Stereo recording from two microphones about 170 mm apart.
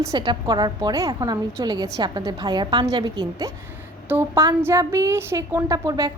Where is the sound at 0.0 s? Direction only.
25° right (ahead or behind).